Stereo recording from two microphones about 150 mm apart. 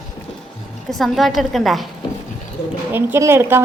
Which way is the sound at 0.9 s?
Centre (ahead or behind).